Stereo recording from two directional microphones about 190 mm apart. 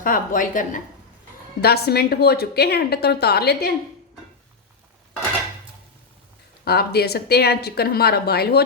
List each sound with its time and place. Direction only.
0.0 s a woman's voice: 45° left (ahead or behind)
1.6 s a woman's voice: 60° left (ahead or behind)
6.7 s a woman's voice: 55° left (ahead or behind)